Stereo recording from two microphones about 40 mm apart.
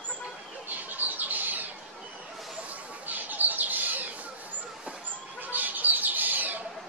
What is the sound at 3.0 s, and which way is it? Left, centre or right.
Squawk, right.